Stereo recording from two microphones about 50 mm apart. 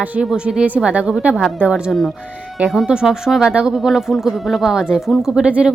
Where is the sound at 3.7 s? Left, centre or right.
Centre.